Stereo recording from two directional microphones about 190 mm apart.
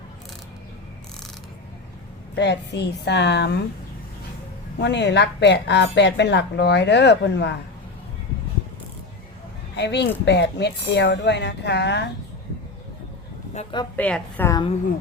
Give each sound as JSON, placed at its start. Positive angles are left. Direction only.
{"t": 2.3, "sound": "speech", "side_deg": 65}
{"t": 4.8, "sound": "speech", "side_deg": 65}
{"t": 9.7, "sound": "speech", "side_deg": 65}
{"t": 13.5, "sound": "speech", "side_deg": 35}
{"t": 13.9, "sound": "a woman's voice", "side_deg": 10}